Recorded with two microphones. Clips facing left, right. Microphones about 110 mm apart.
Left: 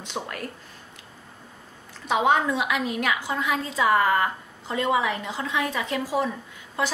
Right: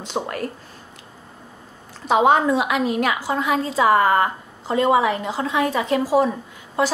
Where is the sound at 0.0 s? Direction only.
35° right (ahead or behind).